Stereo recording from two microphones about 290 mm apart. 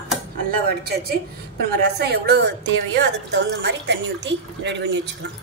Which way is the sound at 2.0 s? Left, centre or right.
Right.